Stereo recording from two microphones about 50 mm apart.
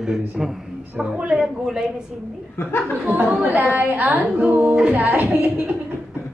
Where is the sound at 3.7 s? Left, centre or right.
Right.